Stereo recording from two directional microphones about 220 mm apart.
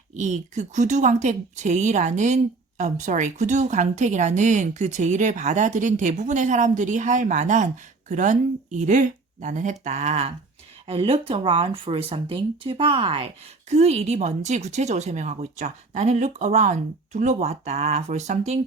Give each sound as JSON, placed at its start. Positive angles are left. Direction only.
{"t": 0.2, "sound": "speech", "side_deg": -30}